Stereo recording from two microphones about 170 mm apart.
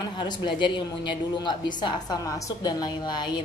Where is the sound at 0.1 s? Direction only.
25° left (ahead or behind).